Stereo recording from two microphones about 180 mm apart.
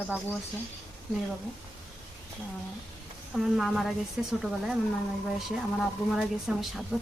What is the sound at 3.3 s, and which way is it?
A woman's voice, centre (ahead or behind).